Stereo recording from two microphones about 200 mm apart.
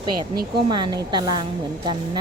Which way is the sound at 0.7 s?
20° right (ahead or behind).